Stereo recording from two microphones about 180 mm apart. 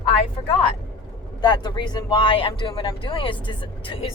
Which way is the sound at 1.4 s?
25° left (ahead or behind).